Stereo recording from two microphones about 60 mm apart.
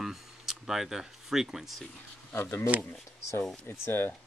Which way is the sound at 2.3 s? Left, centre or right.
Left.